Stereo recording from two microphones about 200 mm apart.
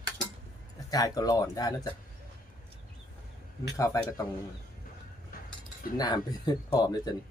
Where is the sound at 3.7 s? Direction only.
15° left (ahead or behind).